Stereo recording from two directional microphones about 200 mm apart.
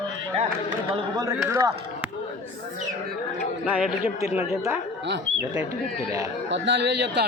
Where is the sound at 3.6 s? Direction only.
5° right (ahead or behind).